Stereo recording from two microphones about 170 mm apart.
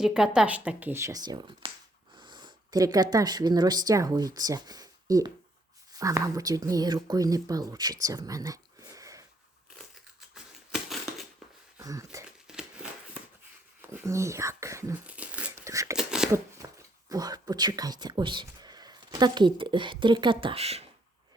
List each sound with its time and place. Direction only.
0.0 s speech: 5° right (ahead or behind); by 7.9 s 25° right (ahead or behind)
8.0 s whispering: 20° right (ahead or behind)
10.3 s a sound: centre (ahead or behind)
11.8 s speech: 20° right (ahead or behind)
12.2 s crumpling: 5° right (ahead or behind)
13.9 s speech: 15° right (ahead or behind)
16.0 s a sound: 5° right (ahead or behind)
16.6 s dog: 20° right (ahead or behind)
17.1 s speech: 20° right (ahead or behind); by 20.8 s 35° right (ahead or behind)